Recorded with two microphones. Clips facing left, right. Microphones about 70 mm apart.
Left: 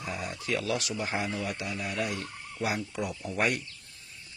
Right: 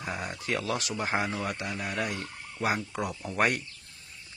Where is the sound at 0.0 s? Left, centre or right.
Right.